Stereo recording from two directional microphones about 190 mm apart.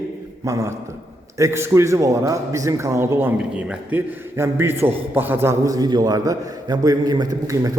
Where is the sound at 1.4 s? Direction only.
15° right (ahead or behind).